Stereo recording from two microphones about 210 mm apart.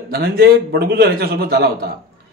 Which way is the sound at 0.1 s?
50° right (ahead or behind).